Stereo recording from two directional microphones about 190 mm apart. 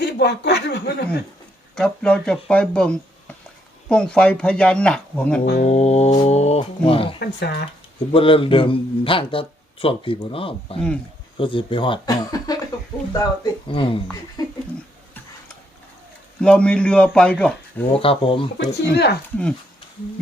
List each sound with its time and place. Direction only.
0.0 s speech: 60° left (ahead or behind)
1.7 s speech: 5° left (ahead or behind)
5.6 s speech: 35° left (ahead or behind)
7.3 s speech: 60° left (ahead or behind)
7.9 s a man's voice: 30° left (ahead or behind)
16.4 s speech: 5° left (ahead or behind)
18.0 s a man's voice: 30° left (ahead or behind)
18.5 s speech: 65° left (ahead or behind)